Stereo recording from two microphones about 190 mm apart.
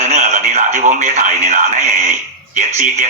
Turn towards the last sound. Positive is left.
turn(degrees=-40)  # may be behind; listen again after turning